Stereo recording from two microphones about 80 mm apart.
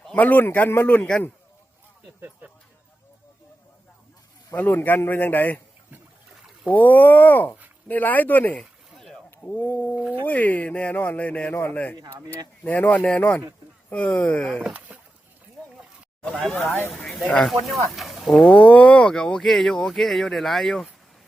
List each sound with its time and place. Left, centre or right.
0.2 s speech: left
4.5 s speech: left
6.7 s speech: left
8.5 s a sound: centre
9.5 s speech: left
9.9 s speech: centre
10.2 s speech: left
14.6 s a sound: centre
16.6 s speech: left
17.2 s speech: centre
17.9 s a sound: centre
18.3 s speech: centre